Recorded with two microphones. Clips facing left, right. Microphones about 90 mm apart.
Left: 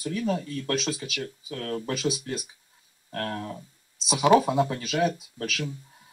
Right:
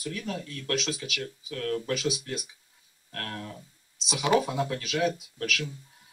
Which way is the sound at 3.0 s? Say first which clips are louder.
Left 6 dB; 30° left (ahead or behind).